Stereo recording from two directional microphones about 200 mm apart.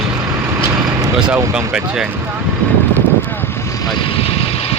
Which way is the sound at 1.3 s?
10° right (ahead or behind).